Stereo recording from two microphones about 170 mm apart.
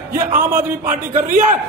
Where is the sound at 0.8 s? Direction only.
45° right (ahead or behind).